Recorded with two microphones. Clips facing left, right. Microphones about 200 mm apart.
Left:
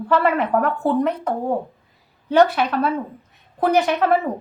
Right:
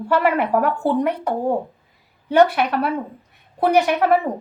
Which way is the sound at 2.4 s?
60° right (ahead or behind).